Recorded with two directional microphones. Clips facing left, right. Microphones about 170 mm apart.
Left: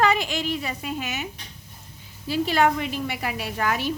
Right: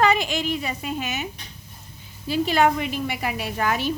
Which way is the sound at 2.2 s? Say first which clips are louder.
Right 1 dB; 20° right (ahead or behind).